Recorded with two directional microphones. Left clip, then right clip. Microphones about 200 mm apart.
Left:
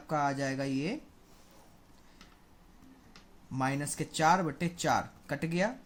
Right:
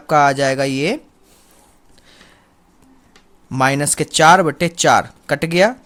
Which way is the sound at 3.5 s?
45° right (ahead or behind).